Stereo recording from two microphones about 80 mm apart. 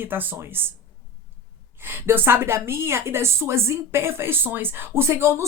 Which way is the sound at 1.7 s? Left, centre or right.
Right.